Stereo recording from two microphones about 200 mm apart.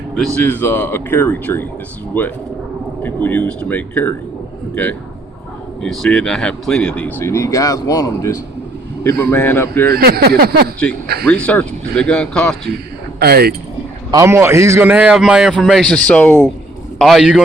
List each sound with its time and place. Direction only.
0.3 s speech: 10° left (ahead or behind)
9.9 s speech: 50° right (ahead or behind)
11.3 s speech: 5° left (ahead or behind)
13.1 s speech: 50° right (ahead or behind)
14.1 s a man's voice: 15° right (ahead or behind)